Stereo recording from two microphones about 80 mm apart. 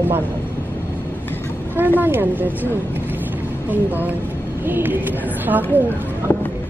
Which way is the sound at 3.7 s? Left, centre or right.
Right.